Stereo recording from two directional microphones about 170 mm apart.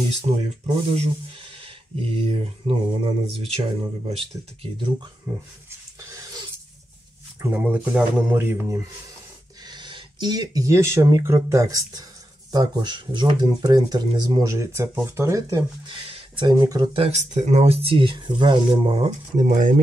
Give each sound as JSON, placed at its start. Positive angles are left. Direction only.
{"t": 0.7, "sound": "speech", "side_deg": -35}
{"t": 5.7, "sound": "a sound", "side_deg": -20}
{"t": 7.4, "sound": "speech", "side_deg": -10}
{"t": 9.7, "sound": "speech", "side_deg": -25}
{"t": 15.9, "sound": "speech", "side_deg": -30}
{"t": 16.9, "sound": "speech", "side_deg": -40}
{"t": 19.3, "sound": "speech", "side_deg": -50}